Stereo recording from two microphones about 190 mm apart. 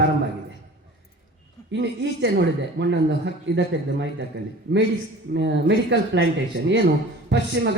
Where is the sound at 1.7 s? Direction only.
65° right (ahead or behind).